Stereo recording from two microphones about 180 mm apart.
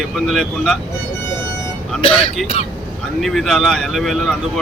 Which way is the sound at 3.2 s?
Centre (ahead or behind).